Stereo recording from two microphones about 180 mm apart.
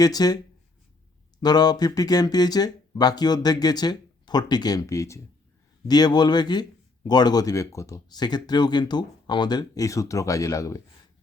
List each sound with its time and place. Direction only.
0.0 s speech: 20° left (ahead or behind)
1.4 s speech: 20° left (ahead or behind)